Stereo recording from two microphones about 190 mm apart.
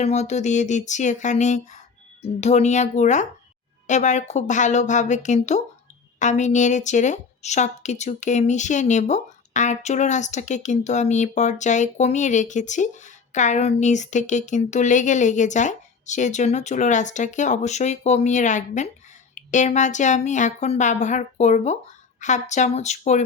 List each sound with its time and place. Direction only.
0.0 s speech: 35° left (ahead or behind)